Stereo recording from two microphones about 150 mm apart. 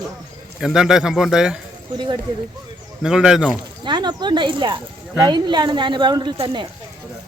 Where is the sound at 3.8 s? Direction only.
30° right (ahead or behind).